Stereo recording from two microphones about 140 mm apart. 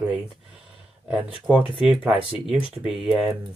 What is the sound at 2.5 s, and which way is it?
Speech, 40° left (ahead or behind).